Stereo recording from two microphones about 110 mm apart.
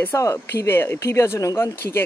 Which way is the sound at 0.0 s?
25° left (ahead or behind).